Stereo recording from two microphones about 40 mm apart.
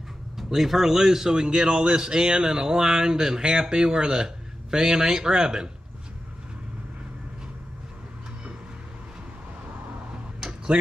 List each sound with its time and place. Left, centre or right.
0.4 s a man's voice: centre
10.7 s speech: right